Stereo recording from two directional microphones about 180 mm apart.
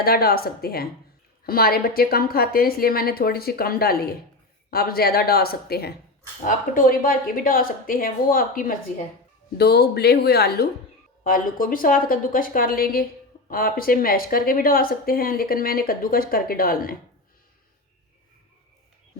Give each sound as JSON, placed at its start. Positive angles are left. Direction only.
{"t": 0.0, "sound": "a woman's voice", "side_deg": 60}
{"t": 6.4, "sound": "speech", "side_deg": 50}
{"t": 9.6, "sound": "a woman's voice", "side_deg": 60}
{"t": 11.2, "sound": "speech", "side_deg": 50}